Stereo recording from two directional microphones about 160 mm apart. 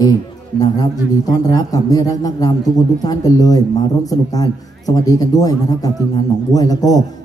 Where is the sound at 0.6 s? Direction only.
25° left (ahead or behind).